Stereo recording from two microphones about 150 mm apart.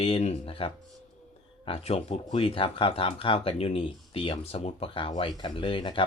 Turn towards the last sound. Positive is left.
turn(degrees=35)  # may be behind; listen again after turning